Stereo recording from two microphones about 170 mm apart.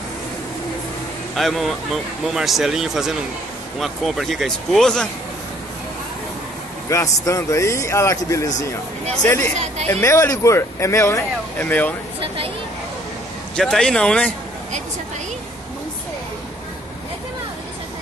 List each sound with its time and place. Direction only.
1.3 s speech: centre (ahead or behind)
6.9 s speech: 20° left (ahead or behind)
13.6 s speech: 5° left (ahead or behind)